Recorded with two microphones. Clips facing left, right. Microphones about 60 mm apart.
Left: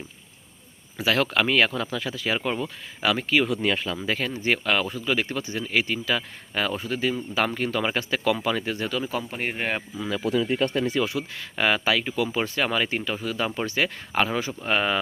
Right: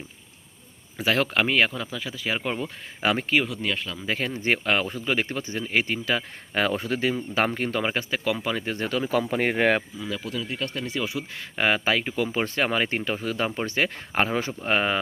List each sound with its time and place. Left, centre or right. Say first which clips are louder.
0.9 s speech: even; right
1.7 s speech: left 4 dB; centre
2.6 s speech: left 1 dB; right
3.6 s speech: left 4 dB; centre
4.0 s speech: right 3 dB; centre
4.4 s speech: right 1 dB; right
7.3 s speech: even; right
7.9 s speech: left 2 dB; centre
8.6 s speech: right 1 dB; right
9.3 s speech: right 6 dB; right
10.3 s speech: left 10 dB; left
11.1 s speech: left 2 dB; right